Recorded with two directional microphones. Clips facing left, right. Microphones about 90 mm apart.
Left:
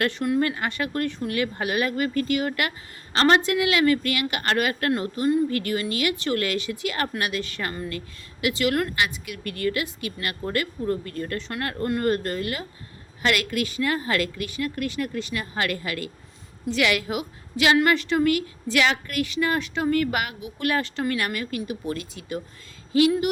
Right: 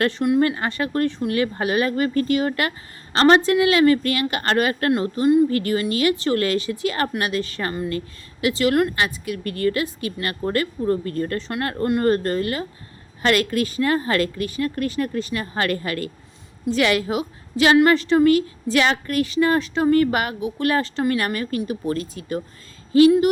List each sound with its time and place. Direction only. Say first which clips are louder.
0.3 s a woman's voice: right 4 dB; 30° right (ahead or behind)